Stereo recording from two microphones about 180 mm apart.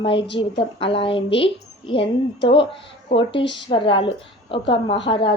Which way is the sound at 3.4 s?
80° left.